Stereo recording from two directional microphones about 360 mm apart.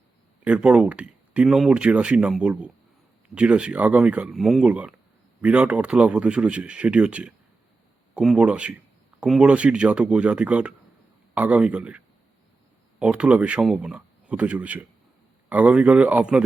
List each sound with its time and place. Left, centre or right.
0.4 s speech: centre